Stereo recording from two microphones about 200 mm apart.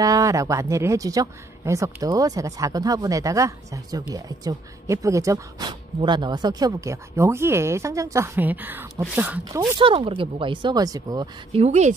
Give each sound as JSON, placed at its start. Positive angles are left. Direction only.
{"t": 0.0, "sound": "speech", "side_deg": -15}
{"t": 9.8, "sound": "speech", "side_deg": -25}
{"t": 11.6, "sound": "a woman's voice", "side_deg": -35}